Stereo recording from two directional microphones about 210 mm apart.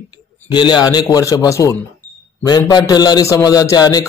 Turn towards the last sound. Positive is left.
turn(degrees=20)  # may be behind; listen again after turning